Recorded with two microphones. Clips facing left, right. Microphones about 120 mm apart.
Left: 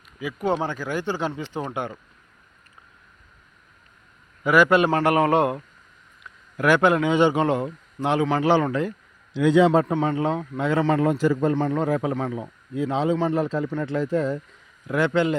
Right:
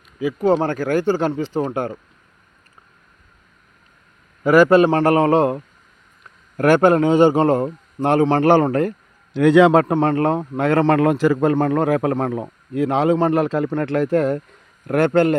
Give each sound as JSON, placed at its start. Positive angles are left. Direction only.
{"t": 0.2, "sound": "speech", "side_deg": -30}
{"t": 0.7, "sound": "speech", "side_deg": -50}
{"t": 4.4, "sound": "speech", "side_deg": -40}
{"t": 6.2, "sound": "a man's voice", "side_deg": -45}
{"t": 8.4, "sound": "a man's voice", "side_deg": -55}
{"t": 11.5, "sound": "a man's voice", "side_deg": -60}
{"t": 14.8, "sound": "a man's voice", "side_deg": -55}